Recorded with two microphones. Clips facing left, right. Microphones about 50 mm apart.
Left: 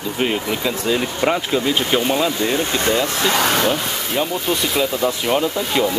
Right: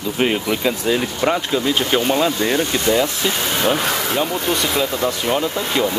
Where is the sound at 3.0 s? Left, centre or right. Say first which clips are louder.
Left 3 dB; left.